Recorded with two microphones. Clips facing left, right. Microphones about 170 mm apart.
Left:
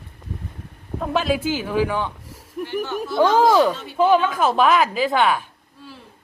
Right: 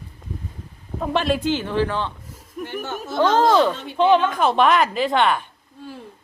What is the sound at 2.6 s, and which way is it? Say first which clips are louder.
Speech: left 3 dB; 50° right (ahead or behind).